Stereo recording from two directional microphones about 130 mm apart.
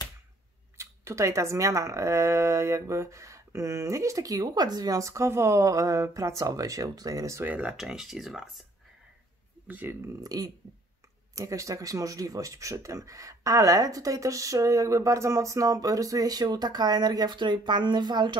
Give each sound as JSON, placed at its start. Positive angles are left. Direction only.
{"t": 0.7, "sound": "speech", "side_deg": -20}
{"t": 7.5, "sound": "speech", "side_deg": -5}
{"t": 9.7, "sound": "speech", "side_deg": -15}
{"t": 10.2, "sound": "speech", "side_deg": -30}